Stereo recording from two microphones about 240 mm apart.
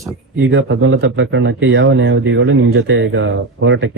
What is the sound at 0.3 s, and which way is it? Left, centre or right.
Speech, right.